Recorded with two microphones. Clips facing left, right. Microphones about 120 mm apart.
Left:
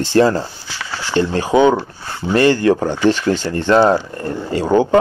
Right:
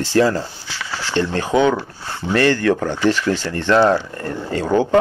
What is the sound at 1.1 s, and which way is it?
Speech, 15° left (ahead or behind).